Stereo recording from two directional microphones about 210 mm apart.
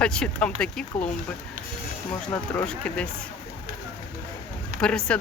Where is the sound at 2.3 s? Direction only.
5° left (ahead or behind).